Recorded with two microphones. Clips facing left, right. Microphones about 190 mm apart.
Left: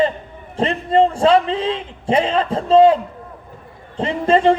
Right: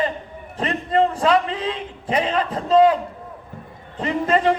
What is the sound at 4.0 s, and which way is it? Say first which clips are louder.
Speech: left 4 dB; 30° left (ahead or behind).